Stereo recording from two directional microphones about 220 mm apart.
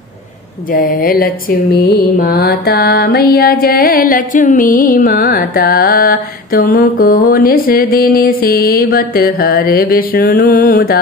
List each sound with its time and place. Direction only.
0.7 s mantra: 40° left (ahead or behind)